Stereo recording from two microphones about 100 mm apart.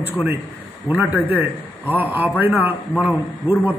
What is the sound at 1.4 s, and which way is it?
A man's voice, 20° right (ahead or behind).